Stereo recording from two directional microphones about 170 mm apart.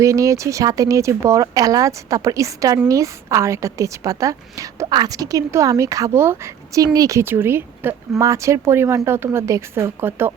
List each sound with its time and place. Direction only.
0.0 s speech: 20° right (ahead or behind)